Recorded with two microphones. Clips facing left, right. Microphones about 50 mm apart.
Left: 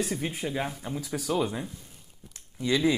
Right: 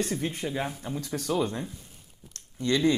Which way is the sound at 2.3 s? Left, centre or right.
Centre.